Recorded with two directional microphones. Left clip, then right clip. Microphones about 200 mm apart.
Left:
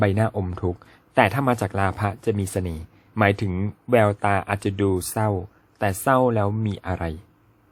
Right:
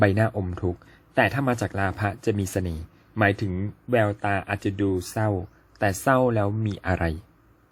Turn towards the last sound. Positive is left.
turn(degrees=0)  # may be behind; listen again after turning